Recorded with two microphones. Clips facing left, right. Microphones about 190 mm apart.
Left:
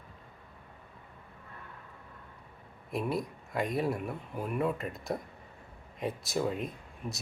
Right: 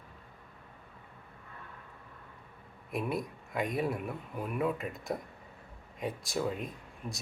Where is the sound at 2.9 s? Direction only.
Centre (ahead or behind).